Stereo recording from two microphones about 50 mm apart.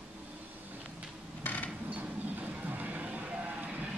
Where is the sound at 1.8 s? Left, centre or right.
Right.